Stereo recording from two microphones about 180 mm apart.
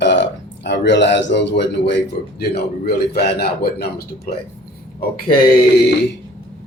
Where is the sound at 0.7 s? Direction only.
80° left.